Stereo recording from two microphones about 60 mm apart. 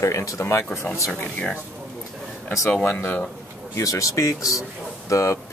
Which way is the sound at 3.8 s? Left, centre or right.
Left.